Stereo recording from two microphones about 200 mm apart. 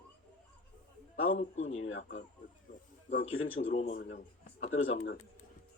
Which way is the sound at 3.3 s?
90° left.